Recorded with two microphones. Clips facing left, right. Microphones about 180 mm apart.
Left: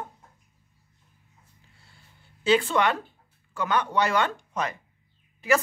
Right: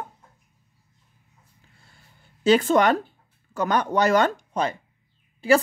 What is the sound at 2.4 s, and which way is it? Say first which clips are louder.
Speech: right 4 dB; 40° right (ahead or behind).